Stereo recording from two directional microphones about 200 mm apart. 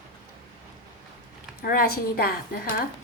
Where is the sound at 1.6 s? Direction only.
50° left (ahead or behind).